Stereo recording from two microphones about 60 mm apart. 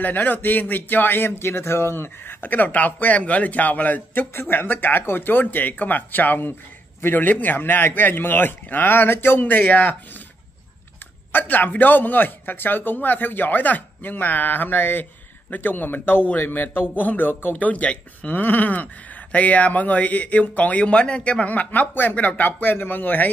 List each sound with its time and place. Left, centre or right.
0.0 s speech: left
11.3 s speech: left